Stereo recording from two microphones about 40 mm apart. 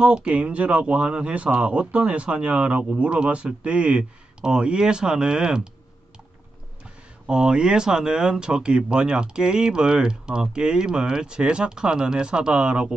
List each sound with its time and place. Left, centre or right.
0.0 s speech: right
6.8 s speech: right